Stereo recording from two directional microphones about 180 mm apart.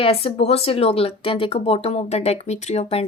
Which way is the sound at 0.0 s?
30° left (ahead or behind).